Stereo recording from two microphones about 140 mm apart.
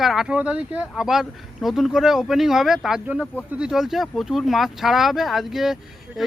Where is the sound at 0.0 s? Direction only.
Centre (ahead or behind).